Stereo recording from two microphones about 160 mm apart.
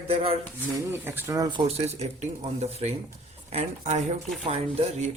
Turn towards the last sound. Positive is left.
turn(degrees=-40)  # may be behind; listen again after turning